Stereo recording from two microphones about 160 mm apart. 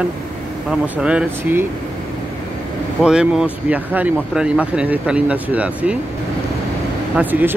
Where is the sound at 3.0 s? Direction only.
5° right (ahead or behind).